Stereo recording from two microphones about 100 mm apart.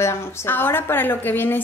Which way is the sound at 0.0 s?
25° left (ahead or behind).